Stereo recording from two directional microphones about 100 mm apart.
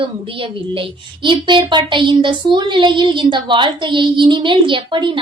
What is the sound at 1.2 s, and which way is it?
Child singing, 55° right (ahead or behind).